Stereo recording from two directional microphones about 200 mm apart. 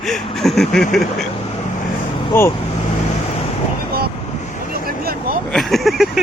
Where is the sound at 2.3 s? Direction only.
10° left (ahead or behind).